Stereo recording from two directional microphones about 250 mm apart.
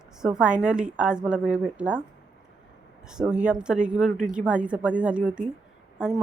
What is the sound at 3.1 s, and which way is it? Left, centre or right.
Speech, centre.